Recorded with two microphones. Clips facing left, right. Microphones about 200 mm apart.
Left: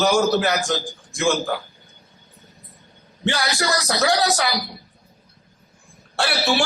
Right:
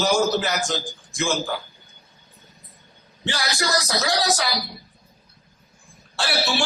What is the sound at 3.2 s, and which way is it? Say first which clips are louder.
A man's voice: left 4 dB; 60° left (ahead or behind).